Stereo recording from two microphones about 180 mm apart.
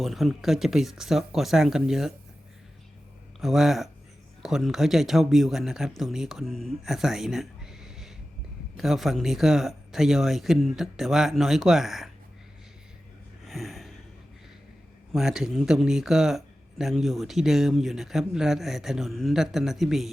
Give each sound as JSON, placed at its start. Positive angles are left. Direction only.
{"t": 0.0, "sound": "speech", "side_deg": 0}
{"t": 3.4, "sound": "speech", "side_deg": 0}
{"t": 13.4, "sound": "gasp", "side_deg": 0}
{"t": 15.1, "sound": "speech", "side_deg": -5}